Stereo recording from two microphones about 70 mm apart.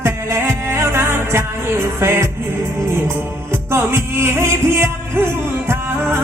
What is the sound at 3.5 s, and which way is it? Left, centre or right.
Music, right.